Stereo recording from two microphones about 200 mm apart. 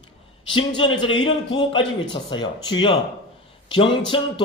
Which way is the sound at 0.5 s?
25° left (ahead or behind).